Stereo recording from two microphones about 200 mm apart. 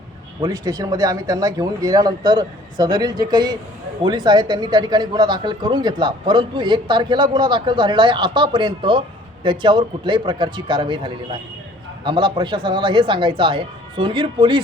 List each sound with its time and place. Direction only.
0.4 s speech: 20° right (ahead or behind)